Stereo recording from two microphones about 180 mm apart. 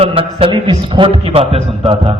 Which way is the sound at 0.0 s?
30° right (ahead or behind).